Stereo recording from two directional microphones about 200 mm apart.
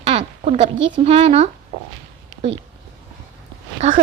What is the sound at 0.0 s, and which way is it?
A woman's voice, 35° right (ahead or behind).